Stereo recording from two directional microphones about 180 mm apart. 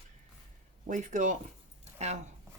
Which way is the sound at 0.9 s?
45° right (ahead or behind).